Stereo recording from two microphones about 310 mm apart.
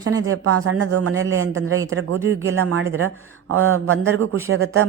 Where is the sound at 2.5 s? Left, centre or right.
Right.